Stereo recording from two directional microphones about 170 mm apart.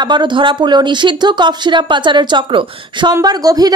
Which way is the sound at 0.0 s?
25° right (ahead or behind).